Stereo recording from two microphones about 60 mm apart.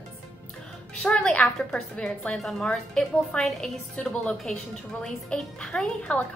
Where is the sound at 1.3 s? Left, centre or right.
Centre.